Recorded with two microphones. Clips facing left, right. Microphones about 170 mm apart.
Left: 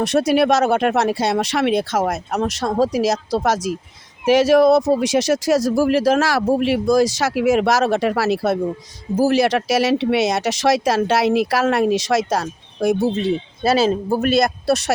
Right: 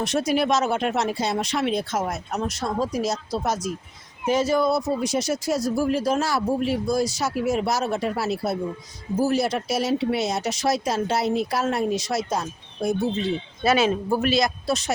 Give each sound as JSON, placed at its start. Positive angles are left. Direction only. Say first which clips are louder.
{"t": 0.0, "sound": "speech", "louder": "left 6 dB", "side_deg": 65}
{"t": 13.6, "sound": "speech", "louder": "left 3 dB", "side_deg": 35}
{"t": 14.2, "sound": "speech", "louder": "left 5 dB", "side_deg": 55}